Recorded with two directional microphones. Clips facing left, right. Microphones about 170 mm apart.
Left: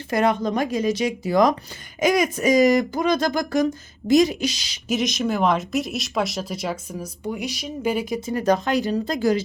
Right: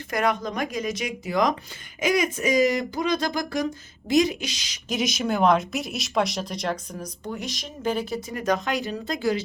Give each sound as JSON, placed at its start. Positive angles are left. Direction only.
{"t": 0.1, "sound": "speech", "side_deg": 30}
{"t": 4.9, "sound": "speech", "side_deg": 0}
{"t": 8.3, "sound": "speech", "side_deg": 35}